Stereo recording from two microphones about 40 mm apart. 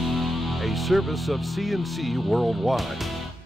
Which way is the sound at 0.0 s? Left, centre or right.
Centre.